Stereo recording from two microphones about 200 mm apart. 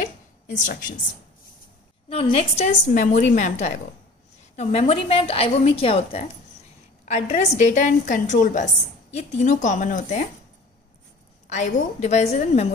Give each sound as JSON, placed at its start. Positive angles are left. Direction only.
{"t": 0.0, "sound": "a sound", "side_deg": 40}
{"t": 2.0, "sound": "a woman's voice", "side_deg": 30}
{"t": 11.4, "sound": "a woman's voice", "side_deg": 35}